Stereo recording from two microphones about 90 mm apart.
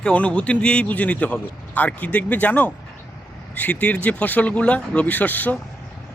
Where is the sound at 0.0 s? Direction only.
15° left (ahead or behind).